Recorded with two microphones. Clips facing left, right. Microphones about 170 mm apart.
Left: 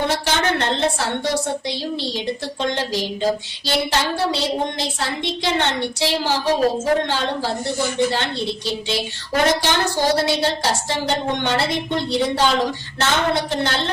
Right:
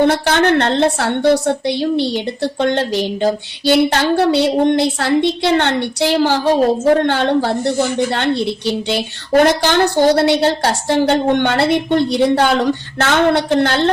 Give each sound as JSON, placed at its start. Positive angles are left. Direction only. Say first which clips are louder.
{"t": 0.1, "sound": "a woman's voice", "louder": "right 7 dB", "side_deg": -65}